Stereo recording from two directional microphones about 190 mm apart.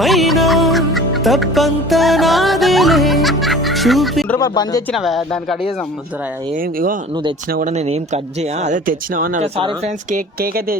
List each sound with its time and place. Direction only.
0.0 s music: centre (ahead or behind)
4.4 s speech: 20° left (ahead or behind)
4.9 s speech: centre (ahead or behind)
6.6 s speech: 50° right (ahead or behind)
9.6 s speech: 25° right (ahead or behind)
10.1 s speech: 50° right (ahead or behind)